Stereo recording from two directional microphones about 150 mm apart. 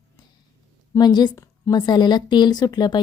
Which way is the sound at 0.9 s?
30° left (ahead or behind).